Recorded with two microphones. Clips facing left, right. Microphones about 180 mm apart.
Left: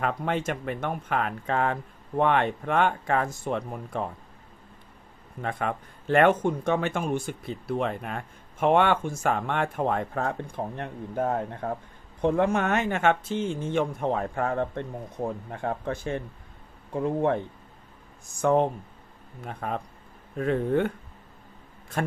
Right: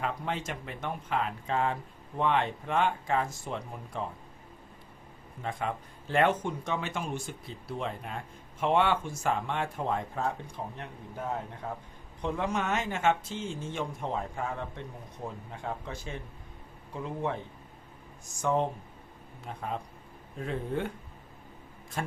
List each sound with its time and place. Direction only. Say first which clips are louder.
0.0 s speech: left 6 dB; 60° left (ahead or behind)
5.4 s speech: left 4 dB; 60° left (ahead or behind)
18.4 s speech: left 6 dB; 60° left (ahead or behind)
22.0 s speech: left 6 dB; 60° left (ahead or behind)